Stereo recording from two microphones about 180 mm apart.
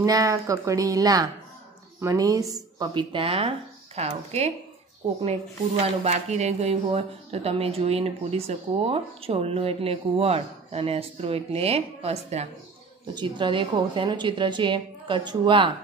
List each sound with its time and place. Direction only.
0.0 s a woman's voice: 20° right (ahead or behind); by 4.5 s 35° right (ahead or behind)
6.0 s speech: 35° right (ahead or behind)
13.1 s a woman's voice: 25° right (ahead or behind)